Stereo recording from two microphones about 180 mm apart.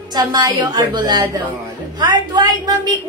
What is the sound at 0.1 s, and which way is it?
A woman's voice, 20° right (ahead or behind).